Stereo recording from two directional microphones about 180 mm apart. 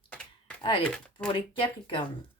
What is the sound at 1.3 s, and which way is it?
Speech, 30° left (ahead or behind).